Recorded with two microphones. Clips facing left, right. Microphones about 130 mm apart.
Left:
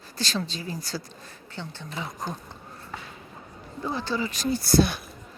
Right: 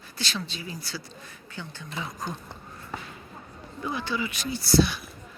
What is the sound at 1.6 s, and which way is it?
Speech, 25° left (ahead or behind).